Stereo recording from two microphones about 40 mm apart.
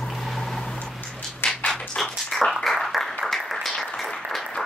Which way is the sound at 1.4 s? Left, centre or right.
Left.